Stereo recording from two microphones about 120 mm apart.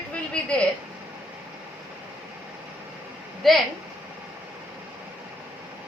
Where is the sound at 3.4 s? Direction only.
Centre (ahead or behind).